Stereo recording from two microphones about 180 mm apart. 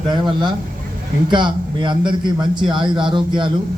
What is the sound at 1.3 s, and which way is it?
A man's voice, 25° right (ahead or behind).